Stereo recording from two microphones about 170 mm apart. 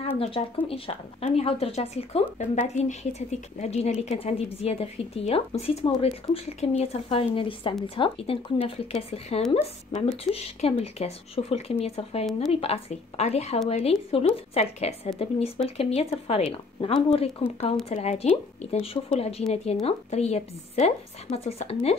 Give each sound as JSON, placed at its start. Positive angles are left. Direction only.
{"t": 0.2, "sound": "speech", "side_deg": 35}